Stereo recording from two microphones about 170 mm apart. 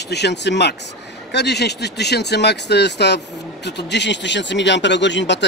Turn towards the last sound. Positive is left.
turn(degrees=90)